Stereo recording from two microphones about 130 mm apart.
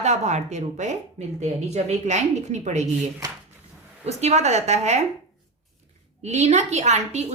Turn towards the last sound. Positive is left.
turn(degrees=-60)  # may be behind; listen again after turning